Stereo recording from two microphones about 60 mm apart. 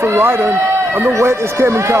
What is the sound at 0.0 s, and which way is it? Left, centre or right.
A man's voice, right.